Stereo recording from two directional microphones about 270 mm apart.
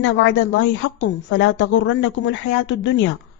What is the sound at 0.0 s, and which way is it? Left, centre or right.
A woman's voice, left.